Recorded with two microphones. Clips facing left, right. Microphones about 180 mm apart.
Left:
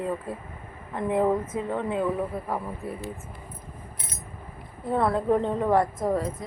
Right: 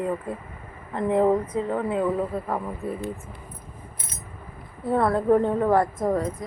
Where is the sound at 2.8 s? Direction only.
20° right (ahead or behind).